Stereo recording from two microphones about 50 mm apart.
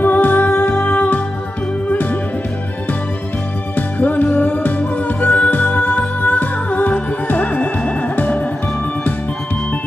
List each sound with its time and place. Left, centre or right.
0.0 s music: left
3.8 s music: left